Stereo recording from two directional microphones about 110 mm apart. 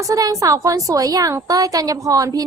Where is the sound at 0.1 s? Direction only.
30° right (ahead or behind).